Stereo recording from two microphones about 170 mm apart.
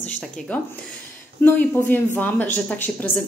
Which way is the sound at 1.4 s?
10° left (ahead or behind).